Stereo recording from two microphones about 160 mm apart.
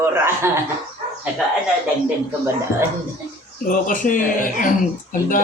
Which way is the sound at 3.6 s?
60° left (ahead or behind).